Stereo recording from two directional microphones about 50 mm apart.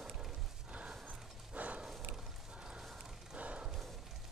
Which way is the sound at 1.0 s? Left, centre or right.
Right.